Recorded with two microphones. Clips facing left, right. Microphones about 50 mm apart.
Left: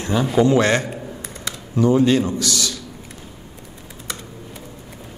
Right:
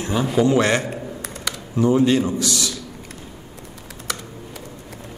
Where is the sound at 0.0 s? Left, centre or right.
Centre.